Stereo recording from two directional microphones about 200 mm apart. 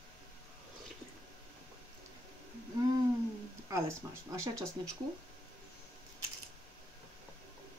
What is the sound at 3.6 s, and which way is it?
Speech, 15° right (ahead or behind).